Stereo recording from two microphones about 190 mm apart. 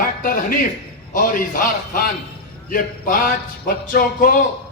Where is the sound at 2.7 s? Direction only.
45° left (ahead or behind).